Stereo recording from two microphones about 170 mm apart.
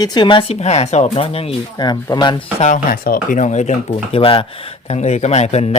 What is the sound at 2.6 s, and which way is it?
Speech, 45° left (ahead or behind).